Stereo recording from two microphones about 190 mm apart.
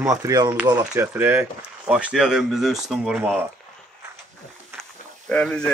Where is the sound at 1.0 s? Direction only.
10° right (ahead or behind).